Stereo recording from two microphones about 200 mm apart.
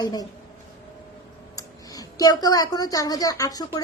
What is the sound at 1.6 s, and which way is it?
A woman's voice, 15° left (ahead or behind).